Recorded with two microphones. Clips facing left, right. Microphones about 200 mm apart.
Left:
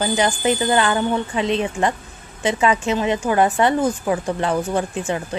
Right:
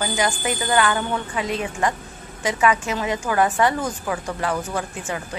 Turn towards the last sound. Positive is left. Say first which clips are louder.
# left 6 dB
turn(degrees=25)  # may be behind; listen again after turning